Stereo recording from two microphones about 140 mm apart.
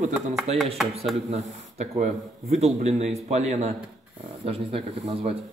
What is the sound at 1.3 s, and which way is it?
Speech, 50° right (ahead or behind).